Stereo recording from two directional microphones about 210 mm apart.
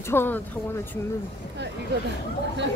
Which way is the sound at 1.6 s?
55° right (ahead or behind).